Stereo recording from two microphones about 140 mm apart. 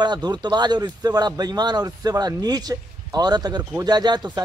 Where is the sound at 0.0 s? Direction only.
30° right (ahead or behind).